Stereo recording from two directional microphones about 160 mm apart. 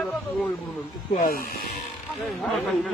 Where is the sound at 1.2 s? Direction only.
65° left (ahead or behind).